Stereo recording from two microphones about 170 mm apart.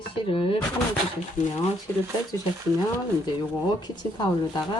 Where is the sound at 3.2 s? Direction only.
25° left (ahead or behind).